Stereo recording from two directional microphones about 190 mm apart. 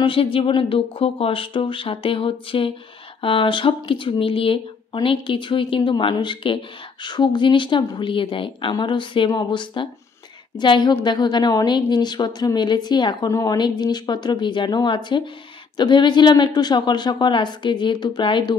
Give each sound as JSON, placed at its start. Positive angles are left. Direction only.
{"t": 0.0, "sound": "a woman's voice", "side_deg": 30}